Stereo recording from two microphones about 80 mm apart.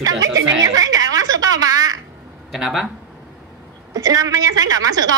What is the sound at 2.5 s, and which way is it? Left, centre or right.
Speech, centre.